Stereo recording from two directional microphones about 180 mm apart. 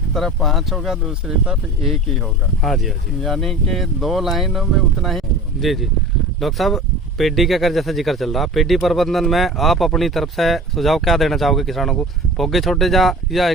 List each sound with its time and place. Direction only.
0.1 s speech: centre (ahead or behind)